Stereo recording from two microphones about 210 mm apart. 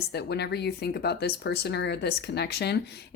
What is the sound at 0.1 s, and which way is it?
Speech, 50° left (ahead or behind).